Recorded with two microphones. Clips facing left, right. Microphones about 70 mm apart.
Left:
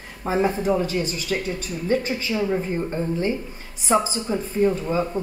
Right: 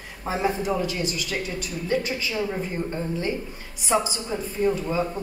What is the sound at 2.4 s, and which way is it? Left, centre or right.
Speech, centre.